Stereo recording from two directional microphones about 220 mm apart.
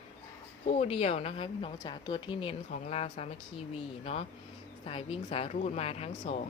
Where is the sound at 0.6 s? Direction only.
30° left (ahead or behind).